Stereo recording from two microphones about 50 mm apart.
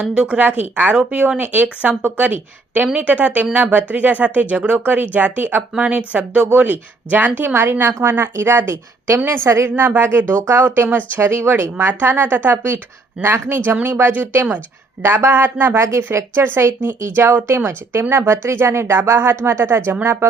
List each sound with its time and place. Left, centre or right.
0.0 s speech: right
0.4 s speech: right
5.7 s speech: right
7.5 s speech: right
13.2 s speech: right
13.7 s speech: right
15.0 s speech: right